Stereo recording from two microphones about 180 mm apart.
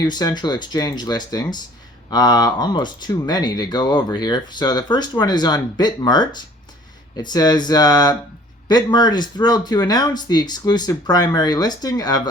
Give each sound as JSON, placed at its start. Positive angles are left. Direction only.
{"t": 0.0, "sound": "speech", "side_deg": 20}